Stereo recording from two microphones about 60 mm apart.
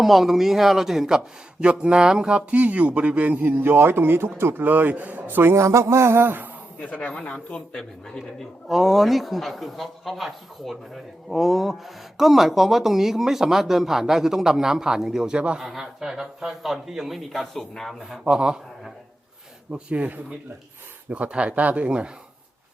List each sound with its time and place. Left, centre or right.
0.0 s speech: centre; by 5.6 s right
5.6 s a sound: right
6.7 s speech: left
7.8 s speech: centre
15.6 s speech: centre
18.3 s a man's voice: centre
19.7 s speech: right